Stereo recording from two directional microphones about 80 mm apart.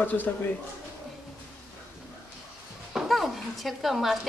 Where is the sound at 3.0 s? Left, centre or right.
Centre.